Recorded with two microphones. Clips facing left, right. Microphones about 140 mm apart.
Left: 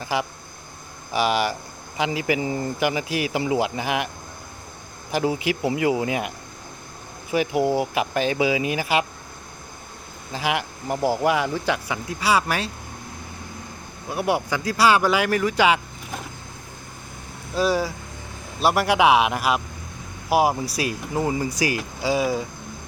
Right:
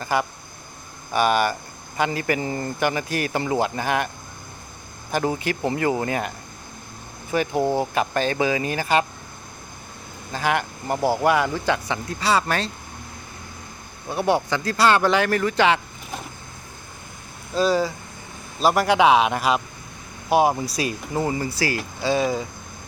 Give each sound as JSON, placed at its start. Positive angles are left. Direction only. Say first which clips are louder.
{"t": 1.1, "sound": "speech", "louder": "right 2 dB", "side_deg": 5}
{"t": 5.1, "sound": "speech", "louder": "left 1 dB", "side_deg": 10}
{"t": 10.3, "sound": "speech", "louder": "right 2 dB", "side_deg": 5}
{"t": 10.8, "sound": "speech", "louder": "even", "side_deg": -20}
{"t": 11.4, "sound": "speech", "louder": "right 1 dB", "side_deg": 10}
{"t": 14.1, "sound": "speech", "louder": "right 2 dB", "side_deg": 10}
{"t": 17.5, "sound": "speech", "louder": "right 2 dB", "side_deg": 5}